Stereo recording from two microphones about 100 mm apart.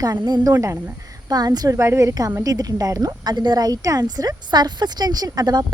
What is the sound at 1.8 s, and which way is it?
A woman's voice, 30° right (ahead or behind).